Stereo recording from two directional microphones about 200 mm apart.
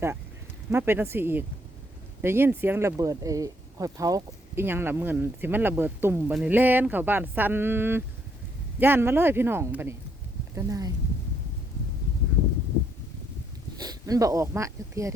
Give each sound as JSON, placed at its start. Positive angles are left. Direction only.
{"t": 0.7, "sound": "speech", "side_deg": -10}
{"t": 13.7, "sound": "speech", "side_deg": -20}